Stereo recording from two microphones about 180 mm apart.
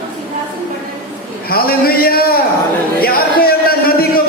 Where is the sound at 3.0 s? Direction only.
55° left (ahead or behind).